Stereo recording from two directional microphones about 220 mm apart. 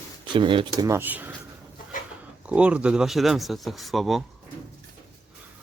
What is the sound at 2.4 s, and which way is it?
Speech, 5° right (ahead or behind).